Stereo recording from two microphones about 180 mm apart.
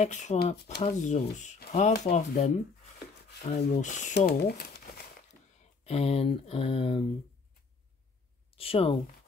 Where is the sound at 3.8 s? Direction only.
40° left (ahead or behind).